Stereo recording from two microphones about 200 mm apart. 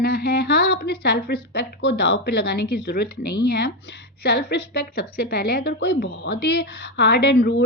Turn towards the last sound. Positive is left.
turn(degrees=55)  # may be behind; listen again after turning